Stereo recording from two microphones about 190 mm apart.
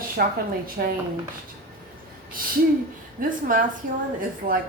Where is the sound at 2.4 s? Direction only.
50° right (ahead or behind).